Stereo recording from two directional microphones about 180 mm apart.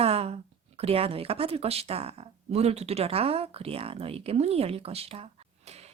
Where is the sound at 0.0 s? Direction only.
35° right (ahead or behind).